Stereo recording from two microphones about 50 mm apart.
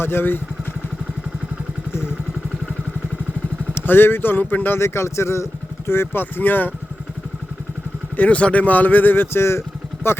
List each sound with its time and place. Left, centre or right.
0.0 s speech: left
3.8 s speech: left
4.8 s speech: left
8.1 s speech: left